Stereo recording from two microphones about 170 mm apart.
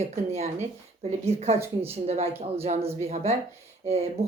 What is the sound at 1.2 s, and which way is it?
Speech, 35° right (ahead or behind).